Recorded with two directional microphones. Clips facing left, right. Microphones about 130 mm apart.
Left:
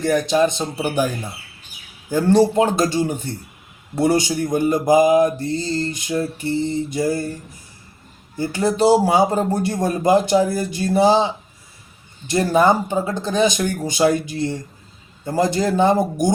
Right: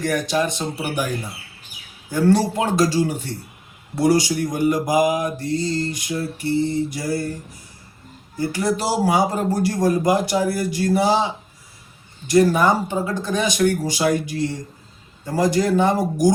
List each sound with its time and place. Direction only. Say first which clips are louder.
0.0 s speech: left 4 dB; 25° left (ahead or behind)
2.1 s speech: left 3 dB; 25° left (ahead or behind)
5.5 s music: even; 15° right (ahead or behind)
5.9 s speech: left 3 dB; 25° left (ahead or behind)
8.4 s speech: left 3 dB; 25° left (ahead or behind)
12.3 s speech: even; 25° left (ahead or behind)